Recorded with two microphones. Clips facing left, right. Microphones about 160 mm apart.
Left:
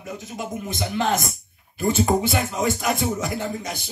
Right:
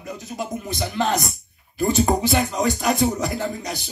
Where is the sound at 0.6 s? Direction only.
40° right (ahead or behind).